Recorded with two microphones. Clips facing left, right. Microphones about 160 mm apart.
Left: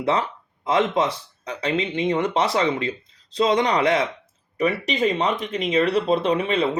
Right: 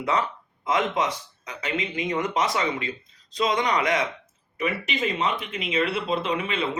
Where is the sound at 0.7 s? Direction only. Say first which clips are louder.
Left 4 dB; 30° left (ahead or behind).